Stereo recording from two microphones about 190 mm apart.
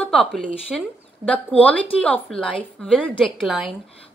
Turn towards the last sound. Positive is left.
turn(degrees=0)  # may be behind; listen again after turning